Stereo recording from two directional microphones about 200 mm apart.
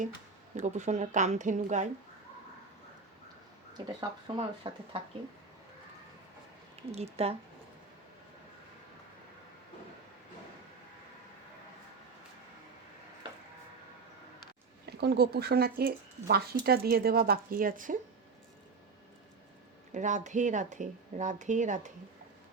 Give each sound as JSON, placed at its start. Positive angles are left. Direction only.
{"t": 0.5, "sound": "speech", "side_deg": -35}
{"t": 3.8, "sound": "speech", "side_deg": -20}
{"t": 6.9, "sound": "speech", "side_deg": -30}
{"t": 14.8, "sound": "speech", "side_deg": -55}
{"t": 19.9, "sound": "speech", "side_deg": -35}